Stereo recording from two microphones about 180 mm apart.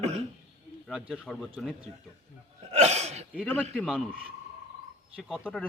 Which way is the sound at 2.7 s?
40° right (ahead or behind).